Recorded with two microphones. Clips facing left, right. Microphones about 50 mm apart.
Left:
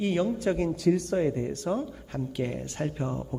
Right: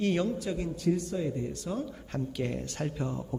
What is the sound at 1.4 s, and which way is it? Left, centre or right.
Speech, left.